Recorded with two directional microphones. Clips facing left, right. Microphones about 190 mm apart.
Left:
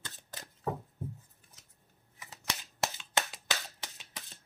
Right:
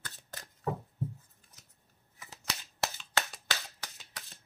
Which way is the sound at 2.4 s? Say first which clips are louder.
Left 1 dB; 20° left (ahead or behind).